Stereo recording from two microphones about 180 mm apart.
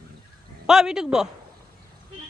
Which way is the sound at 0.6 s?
5° right (ahead or behind).